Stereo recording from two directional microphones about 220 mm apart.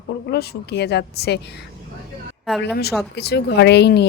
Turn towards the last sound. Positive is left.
turn(degrees=50)  # may be behind; listen again after turning